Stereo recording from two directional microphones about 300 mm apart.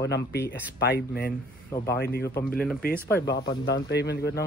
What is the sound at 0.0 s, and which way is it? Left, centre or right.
A man's voice, left.